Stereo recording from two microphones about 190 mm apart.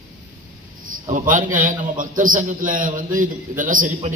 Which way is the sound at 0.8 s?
45° right (ahead or behind).